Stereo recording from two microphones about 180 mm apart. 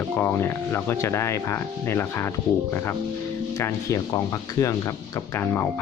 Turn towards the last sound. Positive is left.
turn(degrees=15)  # may be behind; listen again after turning